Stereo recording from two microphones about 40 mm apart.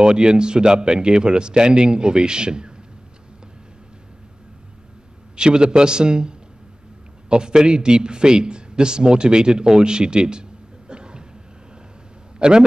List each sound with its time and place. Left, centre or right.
0.0 s a man's voice: centre
5.3 s a man's voice: right
10.9 s a sound: right
12.4 s speech: right